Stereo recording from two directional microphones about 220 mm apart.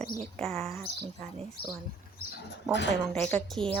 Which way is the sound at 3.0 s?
5° left (ahead or behind).